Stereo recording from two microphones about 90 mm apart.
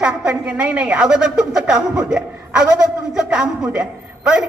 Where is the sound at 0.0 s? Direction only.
15° right (ahead or behind).